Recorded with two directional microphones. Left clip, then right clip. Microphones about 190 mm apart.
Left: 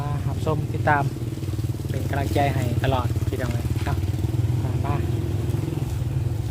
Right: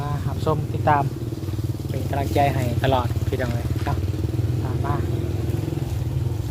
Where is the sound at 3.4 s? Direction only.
55° left (ahead or behind).